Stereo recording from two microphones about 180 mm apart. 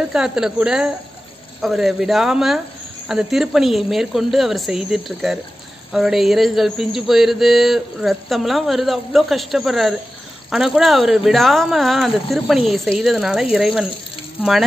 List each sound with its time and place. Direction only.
0.1 s mantra: 5° right (ahead or behind)